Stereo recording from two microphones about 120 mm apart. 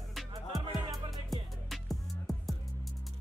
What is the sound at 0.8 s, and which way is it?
Music, 40° right (ahead or behind).